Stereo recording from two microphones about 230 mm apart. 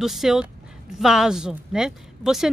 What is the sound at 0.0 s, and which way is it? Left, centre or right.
A woman's voice, centre.